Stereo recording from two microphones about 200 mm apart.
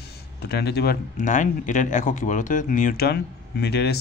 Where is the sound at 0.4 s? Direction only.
55° left (ahead or behind).